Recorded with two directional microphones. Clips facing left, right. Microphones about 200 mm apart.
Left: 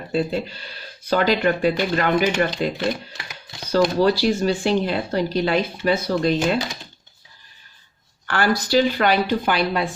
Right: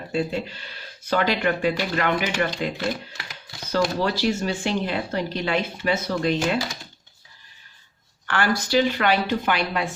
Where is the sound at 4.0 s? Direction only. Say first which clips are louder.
Left 5 dB; 35° left (ahead or behind).